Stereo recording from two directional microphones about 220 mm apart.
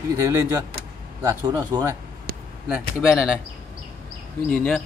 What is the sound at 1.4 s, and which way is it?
Speech, 15° right (ahead or behind).